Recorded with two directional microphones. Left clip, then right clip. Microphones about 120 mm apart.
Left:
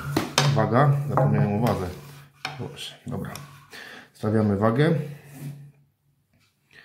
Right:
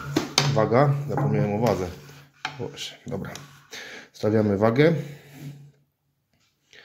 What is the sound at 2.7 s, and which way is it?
Speech, 35° right (ahead or behind).